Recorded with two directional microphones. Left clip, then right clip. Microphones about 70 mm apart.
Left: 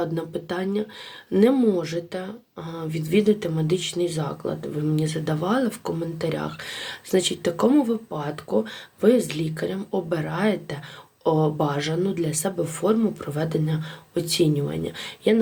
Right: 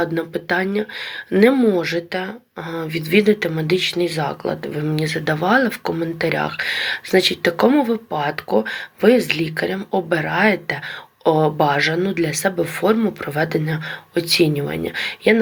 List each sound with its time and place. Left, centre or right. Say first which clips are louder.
0.0 s speech: right 6 dB; left
5.0 s speech: right 7 dB; left
8.1 s speech: right 7 dB; left